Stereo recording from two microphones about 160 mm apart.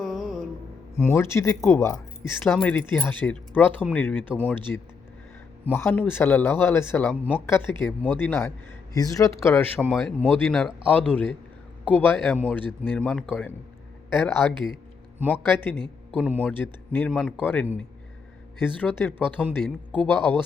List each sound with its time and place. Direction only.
0.0 s mantra: centre (ahead or behind)
0.9 s speech: 15° left (ahead or behind)
2.4 s speech: 5° left (ahead or behind)
15.3 s speech: 10° left (ahead or behind)